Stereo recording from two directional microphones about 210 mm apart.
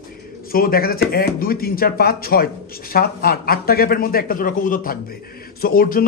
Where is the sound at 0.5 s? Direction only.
45° left (ahead or behind).